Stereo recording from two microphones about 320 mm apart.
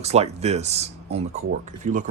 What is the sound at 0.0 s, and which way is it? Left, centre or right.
Speech, centre.